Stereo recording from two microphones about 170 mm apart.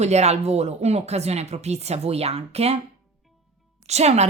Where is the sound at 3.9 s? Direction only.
40° right (ahead or behind).